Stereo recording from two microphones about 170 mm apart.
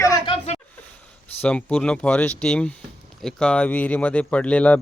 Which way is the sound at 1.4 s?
5° left (ahead or behind).